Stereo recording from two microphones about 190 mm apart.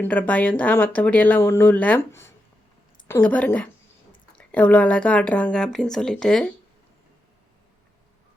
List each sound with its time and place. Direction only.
0.0 s speech: 10° left (ahead or behind)